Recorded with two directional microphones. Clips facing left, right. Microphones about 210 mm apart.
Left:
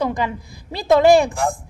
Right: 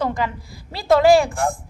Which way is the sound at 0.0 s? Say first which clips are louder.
Left 1 dB; 15° left (ahead or behind).